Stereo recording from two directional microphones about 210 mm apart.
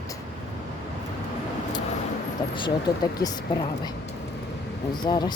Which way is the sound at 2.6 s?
20° left (ahead or behind).